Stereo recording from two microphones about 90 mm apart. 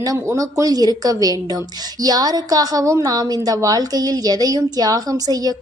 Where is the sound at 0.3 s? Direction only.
40° right (ahead or behind).